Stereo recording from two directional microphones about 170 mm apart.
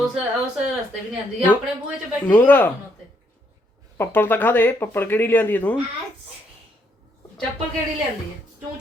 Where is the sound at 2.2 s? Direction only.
10° left (ahead or behind).